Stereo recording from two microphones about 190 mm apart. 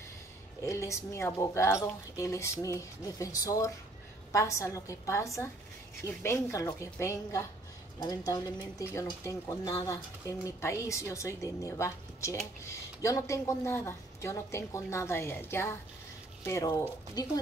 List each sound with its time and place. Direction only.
0.6 s a woman's voice: 15° left (ahead or behind)